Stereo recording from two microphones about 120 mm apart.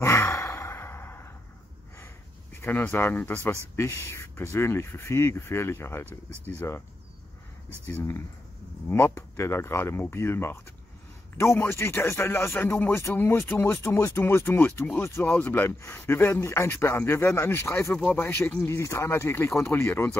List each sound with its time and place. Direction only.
0.0 s sigh: 25° left (ahead or behind)
2.5 s speech: 15° left (ahead or behind)
7.8 s speech: 20° left (ahead or behind)